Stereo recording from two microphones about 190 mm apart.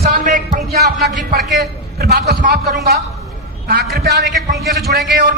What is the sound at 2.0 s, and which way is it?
Speech, 55° right (ahead or behind).